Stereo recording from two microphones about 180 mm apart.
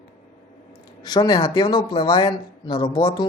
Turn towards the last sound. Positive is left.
turn(degrees=25)  # may be behind; listen again after turning